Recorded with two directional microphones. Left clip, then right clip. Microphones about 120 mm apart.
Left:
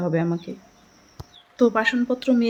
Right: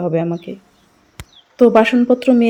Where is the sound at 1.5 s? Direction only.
35° right (ahead or behind).